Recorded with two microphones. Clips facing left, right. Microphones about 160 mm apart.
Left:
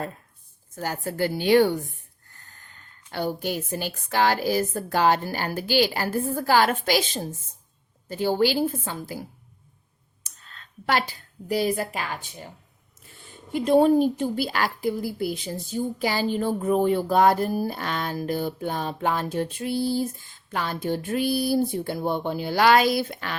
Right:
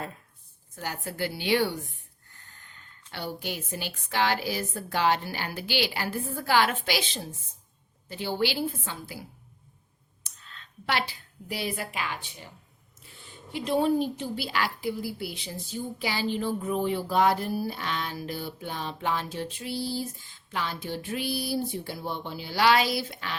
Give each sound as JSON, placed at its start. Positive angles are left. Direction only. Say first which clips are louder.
{"t": 0.8, "sound": "a woman's voice", "louder": "left 6 dB", "side_deg": 45}
{"t": 10.2, "sound": "a woman's voice", "louder": "left 1 dB", "side_deg": 45}